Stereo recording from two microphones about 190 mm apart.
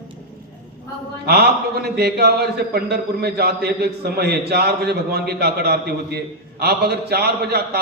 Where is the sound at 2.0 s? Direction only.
55° right (ahead or behind).